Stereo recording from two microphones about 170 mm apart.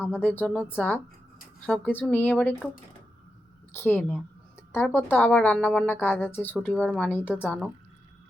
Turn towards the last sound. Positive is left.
turn(degrees=5)  # may be behind; listen again after turning